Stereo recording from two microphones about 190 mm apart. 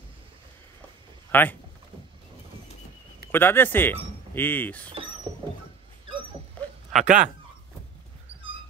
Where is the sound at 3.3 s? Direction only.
10° left (ahead or behind).